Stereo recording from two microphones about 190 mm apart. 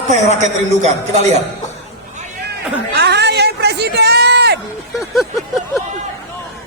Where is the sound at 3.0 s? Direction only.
60° right (ahead or behind).